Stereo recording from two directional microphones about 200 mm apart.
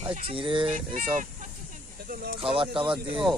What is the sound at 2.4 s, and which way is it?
Mantra, 25° right (ahead or behind).